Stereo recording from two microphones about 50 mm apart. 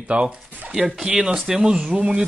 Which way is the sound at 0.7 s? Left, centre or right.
Centre.